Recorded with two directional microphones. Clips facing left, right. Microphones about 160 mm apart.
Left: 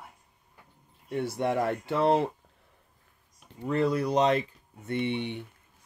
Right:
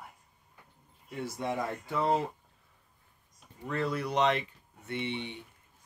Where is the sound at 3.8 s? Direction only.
40° left (ahead or behind).